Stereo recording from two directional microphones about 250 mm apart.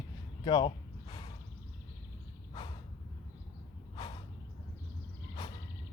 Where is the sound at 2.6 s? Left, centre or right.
Centre.